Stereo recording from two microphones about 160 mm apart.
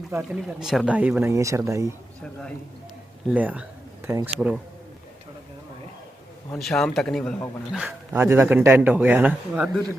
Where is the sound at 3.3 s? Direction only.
10° right (ahead or behind).